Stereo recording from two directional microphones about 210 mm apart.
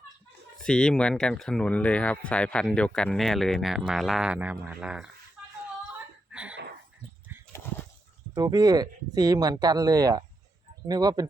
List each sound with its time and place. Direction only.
0.6 s speech: 5° left (ahead or behind)
6.3 s a sound: 5° right (ahead or behind)
8.4 s speech: 20° right (ahead or behind)